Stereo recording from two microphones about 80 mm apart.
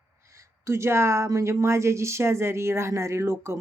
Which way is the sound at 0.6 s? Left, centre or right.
Right.